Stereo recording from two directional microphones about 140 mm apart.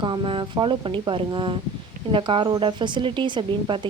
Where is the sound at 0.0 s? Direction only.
35° right (ahead or behind).